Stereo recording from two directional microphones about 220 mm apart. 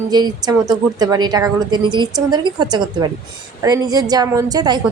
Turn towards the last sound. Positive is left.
turn(degrees=-20)  # may be behind; listen again after turning